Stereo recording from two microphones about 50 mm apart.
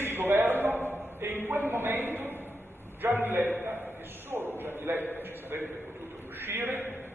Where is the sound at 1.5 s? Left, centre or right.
Right.